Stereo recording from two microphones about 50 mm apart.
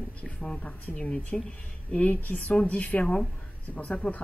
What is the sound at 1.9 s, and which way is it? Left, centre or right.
Speech, left.